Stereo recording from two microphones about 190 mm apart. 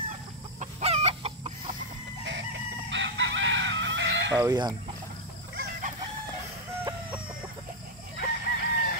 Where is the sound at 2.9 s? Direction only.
75° right (ahead or behind).